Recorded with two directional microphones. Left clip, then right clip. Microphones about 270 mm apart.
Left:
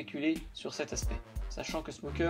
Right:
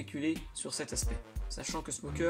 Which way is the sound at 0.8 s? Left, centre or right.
Centre.